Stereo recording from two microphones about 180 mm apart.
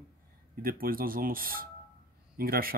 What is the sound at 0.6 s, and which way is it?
Speech, 55° right (ahead or behind).